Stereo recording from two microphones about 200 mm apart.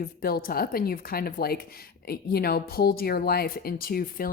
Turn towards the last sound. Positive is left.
turn(degrees=45)  # may be behind; listen again after turning